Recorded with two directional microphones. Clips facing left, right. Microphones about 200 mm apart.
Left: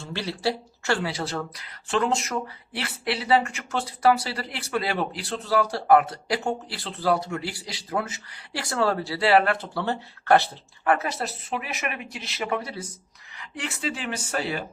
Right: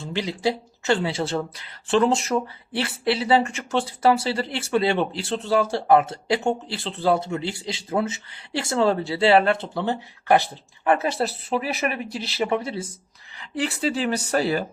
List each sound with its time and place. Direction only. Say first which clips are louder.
0.0 s speech: right 3 dB; 15° right (ahead or behind)
10.9 s speech: right 5 dB; 30° right (ahead or behind)